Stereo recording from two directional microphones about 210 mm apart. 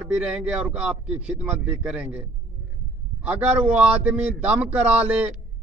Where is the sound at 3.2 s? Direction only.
5° right (ahead or behind).